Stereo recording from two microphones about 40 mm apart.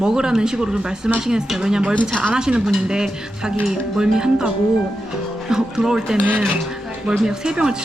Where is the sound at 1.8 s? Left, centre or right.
Right.